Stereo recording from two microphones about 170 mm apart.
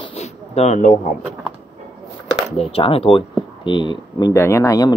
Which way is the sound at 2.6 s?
35° left (ahead or behind).